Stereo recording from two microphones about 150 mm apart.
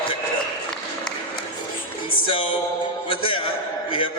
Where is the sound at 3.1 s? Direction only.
35° left (ahead or behind).